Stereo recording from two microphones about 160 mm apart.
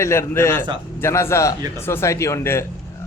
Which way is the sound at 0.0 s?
15° left (ahead or behind).